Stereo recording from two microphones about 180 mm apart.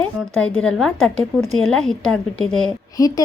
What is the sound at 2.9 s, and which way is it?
Speech, 20° left (ahead or behind).